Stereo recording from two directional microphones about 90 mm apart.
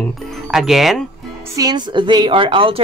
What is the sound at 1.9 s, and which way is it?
Speech, 60° right (ahead or behind).